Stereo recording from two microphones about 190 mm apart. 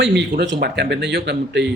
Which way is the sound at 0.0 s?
65° right (ahead or behind).